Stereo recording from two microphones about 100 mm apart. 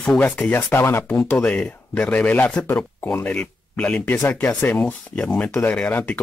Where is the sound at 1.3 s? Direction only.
10° left (ahead or behind).